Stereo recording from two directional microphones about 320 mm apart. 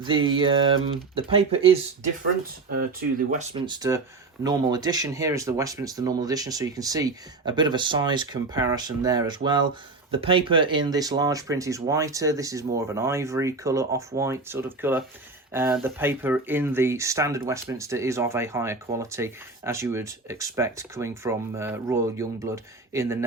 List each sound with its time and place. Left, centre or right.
0.0 s speech: centre